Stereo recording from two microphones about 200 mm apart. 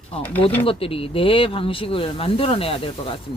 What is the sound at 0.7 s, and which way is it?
Speech, 30° left (ahead or behind).